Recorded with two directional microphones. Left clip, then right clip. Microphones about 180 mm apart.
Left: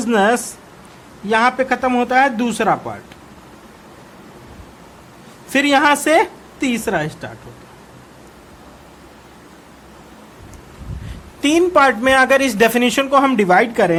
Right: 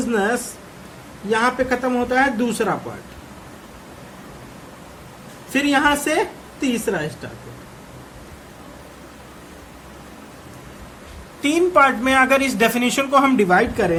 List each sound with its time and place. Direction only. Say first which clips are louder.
0.1 s speech: left 7 dB; 45° left (ahead or behind)
5.5 s a woman's voice: left 4 dB; 50° left (ahead or behind)
11.4 s speech: left 2 dB; 40° left (ahead or behind)